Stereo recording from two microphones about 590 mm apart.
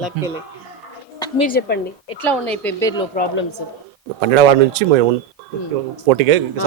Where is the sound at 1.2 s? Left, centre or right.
Centre.